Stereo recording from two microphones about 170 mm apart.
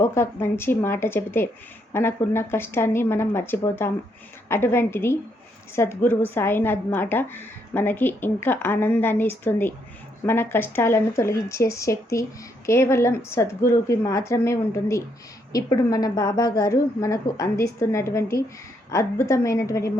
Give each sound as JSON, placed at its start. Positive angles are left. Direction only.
{"t": 0.0, "sound": "a woman's voice", "side_deg": 15}